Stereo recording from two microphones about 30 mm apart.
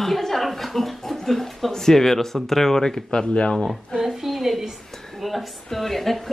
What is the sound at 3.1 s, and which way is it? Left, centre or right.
Speech, left.